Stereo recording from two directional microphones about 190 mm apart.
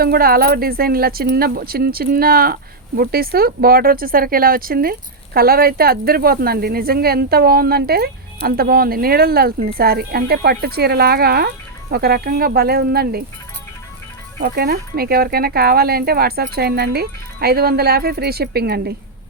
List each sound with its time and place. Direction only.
0.0 s speech: 50° right (ahead or behind)
14.3 s speech: 55° right (ahead or behind)